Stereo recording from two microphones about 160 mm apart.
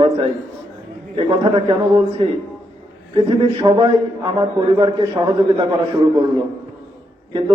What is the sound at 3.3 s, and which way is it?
A man's voice, 35° right (ahead or behind).